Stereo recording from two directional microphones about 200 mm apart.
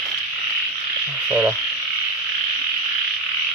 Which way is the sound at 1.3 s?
5° right (ahead or behind).